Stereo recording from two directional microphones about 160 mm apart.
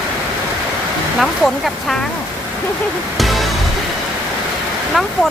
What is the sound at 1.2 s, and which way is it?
Speech, centre (ahead or behind).